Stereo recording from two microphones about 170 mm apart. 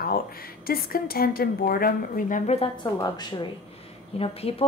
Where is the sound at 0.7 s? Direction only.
60° left (ahead or behind); by 2.7 s 40° left (ahead or behind).